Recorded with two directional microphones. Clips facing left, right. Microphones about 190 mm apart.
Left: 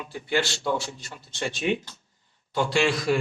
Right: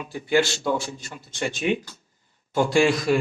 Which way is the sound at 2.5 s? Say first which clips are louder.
Right 4 dB; 15° right (ahead or behind).